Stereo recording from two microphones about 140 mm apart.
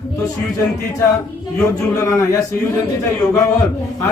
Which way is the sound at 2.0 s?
20° left (ahead or behind).